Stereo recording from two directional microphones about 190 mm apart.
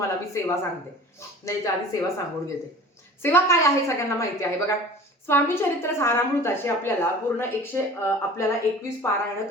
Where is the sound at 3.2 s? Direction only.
10° left (ahead or behind).